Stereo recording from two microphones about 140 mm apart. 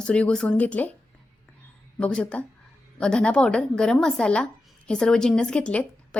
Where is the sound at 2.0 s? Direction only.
10° left (ahead or behind).